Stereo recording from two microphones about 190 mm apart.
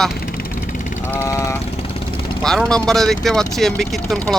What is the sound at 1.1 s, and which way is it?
Speech, 15° left (ahead or behind).